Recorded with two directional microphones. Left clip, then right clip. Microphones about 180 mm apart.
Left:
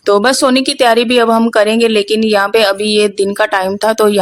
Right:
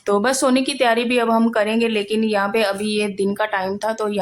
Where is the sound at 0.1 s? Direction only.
40° left (ahead or behind).